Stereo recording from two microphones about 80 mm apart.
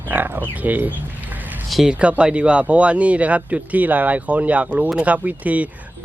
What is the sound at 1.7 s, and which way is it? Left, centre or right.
Speech, centre.